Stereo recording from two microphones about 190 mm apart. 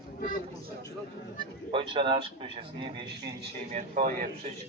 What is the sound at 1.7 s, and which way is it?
Speech, 25° right (ahead or behind).